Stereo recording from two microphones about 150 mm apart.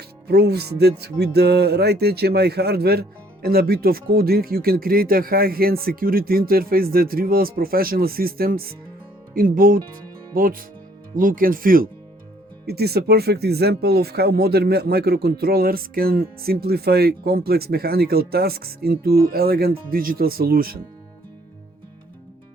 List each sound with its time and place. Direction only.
0.3 s speech: 90° right
9.3 s speech: 70° right (ahead or behind)
12.6 s speech: 90° right